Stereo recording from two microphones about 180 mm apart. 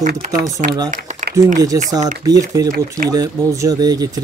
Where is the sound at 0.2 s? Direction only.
45° right (ahead or behind).